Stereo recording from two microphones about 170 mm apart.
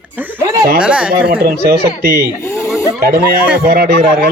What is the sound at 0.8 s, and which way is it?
Speech, 5° right (ahead or behind).